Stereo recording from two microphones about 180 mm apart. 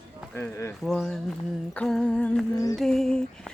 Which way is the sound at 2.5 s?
20° left (ahead or behind).